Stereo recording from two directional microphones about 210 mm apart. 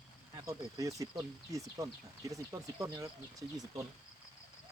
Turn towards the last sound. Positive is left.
turn(degrees=-15)  # may be behind; listen again after turning